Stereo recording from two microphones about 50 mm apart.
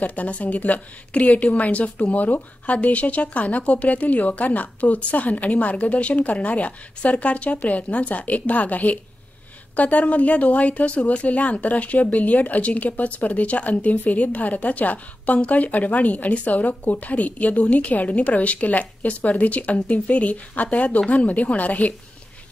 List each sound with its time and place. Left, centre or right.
0.0 s speech: left